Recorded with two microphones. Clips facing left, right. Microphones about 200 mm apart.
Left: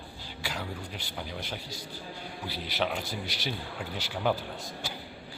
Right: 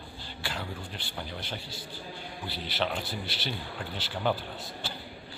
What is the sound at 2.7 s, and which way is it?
Speech, 5° left (ahead or behind).